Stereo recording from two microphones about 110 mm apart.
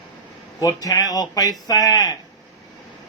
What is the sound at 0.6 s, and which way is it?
A man's voice, 35° left (ahead or behind).